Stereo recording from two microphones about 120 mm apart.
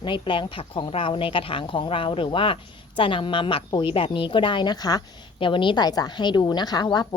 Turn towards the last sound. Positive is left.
turn(degrees=35)  # may be behind; listen again after turning